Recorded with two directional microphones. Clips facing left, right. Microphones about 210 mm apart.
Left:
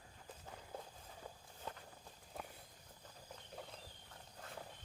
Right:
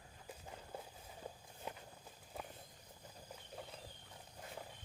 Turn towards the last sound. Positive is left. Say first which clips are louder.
# right 1 dB
turn(degrees=-10)  # may be behind; listen again after turning